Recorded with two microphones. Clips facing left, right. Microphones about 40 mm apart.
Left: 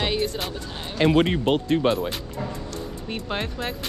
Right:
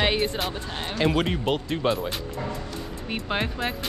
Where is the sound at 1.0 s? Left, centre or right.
Left.